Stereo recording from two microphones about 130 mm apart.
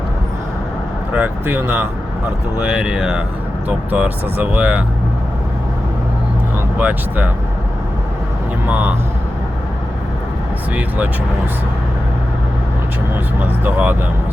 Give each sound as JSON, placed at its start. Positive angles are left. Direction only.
{"t": 1.1, "sound": "speech", "side_deg": -15}
{"t": 6.7, "sound": "speech", "side_deg": -10}
{"t": 10.8, "sound": "speech", "side_deg": -10}
{"t": 13.4, "sound": "speech", "side_deg": -10}